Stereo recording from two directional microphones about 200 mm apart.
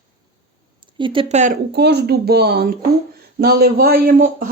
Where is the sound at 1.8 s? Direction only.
55° right (ahead or behind).